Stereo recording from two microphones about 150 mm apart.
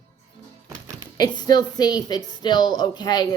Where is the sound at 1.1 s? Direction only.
25° left (ahead or behind).